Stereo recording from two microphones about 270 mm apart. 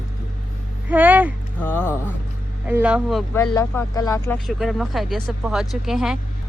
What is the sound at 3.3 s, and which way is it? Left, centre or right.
Speech, centre.